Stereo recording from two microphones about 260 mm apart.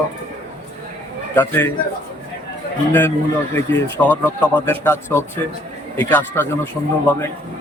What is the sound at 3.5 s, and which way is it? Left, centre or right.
Speech, centre.